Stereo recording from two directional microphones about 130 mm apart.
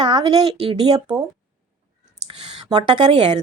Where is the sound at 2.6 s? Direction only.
40° right (ahead or behind).